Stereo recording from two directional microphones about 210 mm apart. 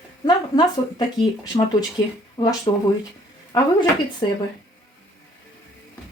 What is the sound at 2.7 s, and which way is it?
Speech, 25° left (ahead or behind).